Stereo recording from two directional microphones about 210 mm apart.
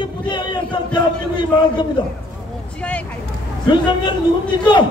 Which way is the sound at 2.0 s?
20° left (ahead or behind).